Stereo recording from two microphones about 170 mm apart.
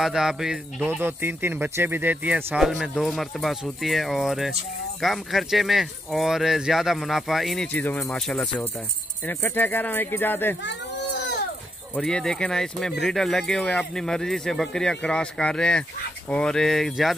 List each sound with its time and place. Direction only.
0.0 s speech: 5° right (ahead or behind)
10.6 s baby cry: 85° left
11.9 s speech: 5° left (ahead or behind)